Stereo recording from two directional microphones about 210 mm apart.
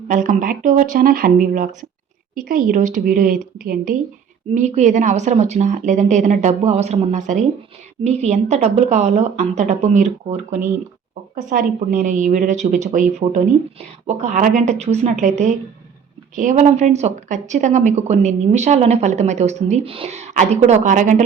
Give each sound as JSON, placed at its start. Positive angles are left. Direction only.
{"t": 0.1, "sound": "speech", "side_deg": -35}